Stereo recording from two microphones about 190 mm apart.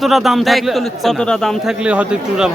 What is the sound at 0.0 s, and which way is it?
A man's voice, centre (ahead or behind).